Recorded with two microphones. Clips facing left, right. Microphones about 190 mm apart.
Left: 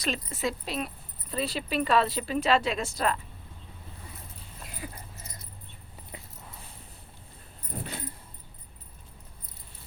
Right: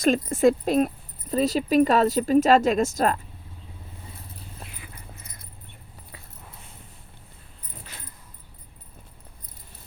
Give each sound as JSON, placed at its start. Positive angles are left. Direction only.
{"t": 0.0, "sound": "speech", "side_deg": -50}
{"t": 5.1, "sound": "dog", "side_deg": -55}
{"t": 7.7, "sound": "keys jangling", "side_deg": 55}